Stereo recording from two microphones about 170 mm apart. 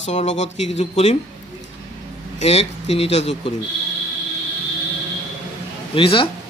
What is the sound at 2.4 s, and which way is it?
A man's voice, 40° left (ahead or behind).